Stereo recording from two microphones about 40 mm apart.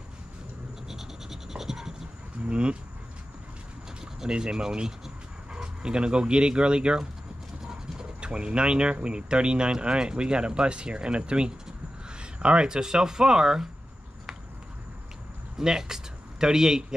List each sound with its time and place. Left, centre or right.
0.8 s scratch: centre
2.4 s speech: right
4.0 s speech: centre
7.6 s a sound: centre
8.2 s speech: right
15.5 s speech: centre